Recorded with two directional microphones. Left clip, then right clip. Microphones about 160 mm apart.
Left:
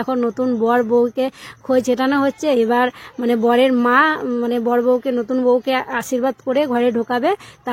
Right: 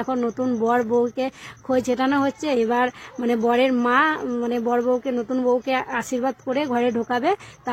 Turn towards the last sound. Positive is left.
turn(degrees=30)  # may be behind; listen again after turning